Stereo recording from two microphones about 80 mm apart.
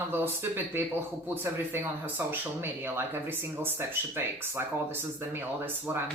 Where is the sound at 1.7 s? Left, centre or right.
Right.